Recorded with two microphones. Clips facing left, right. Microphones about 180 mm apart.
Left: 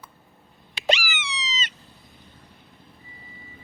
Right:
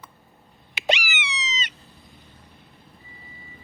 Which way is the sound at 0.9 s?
20° right (ahead or behind).